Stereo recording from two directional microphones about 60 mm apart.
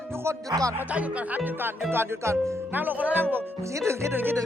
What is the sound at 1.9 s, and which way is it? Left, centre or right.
Speech, right.